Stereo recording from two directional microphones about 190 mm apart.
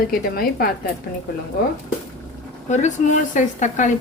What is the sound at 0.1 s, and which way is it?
Speech, 50° left (ahead or behind).